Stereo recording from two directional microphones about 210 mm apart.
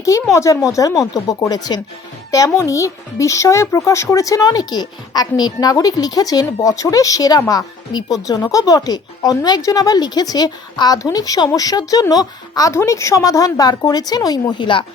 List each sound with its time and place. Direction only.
0.3 s a woman's voice: 15° left (ahead or behind)